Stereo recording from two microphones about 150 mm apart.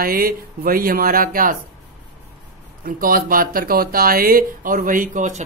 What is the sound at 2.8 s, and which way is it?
Speech, 70° right (ahead or behind).